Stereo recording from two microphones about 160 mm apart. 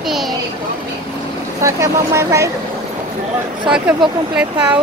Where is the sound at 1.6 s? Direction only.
20° right (ahead or behind).